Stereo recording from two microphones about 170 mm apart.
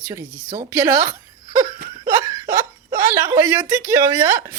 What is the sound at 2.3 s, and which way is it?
Chuckle, 15° right (ahead or behind).